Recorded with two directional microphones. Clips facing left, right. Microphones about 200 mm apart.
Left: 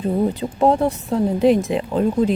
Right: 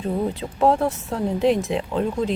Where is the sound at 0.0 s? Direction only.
Centre (ahead or behind).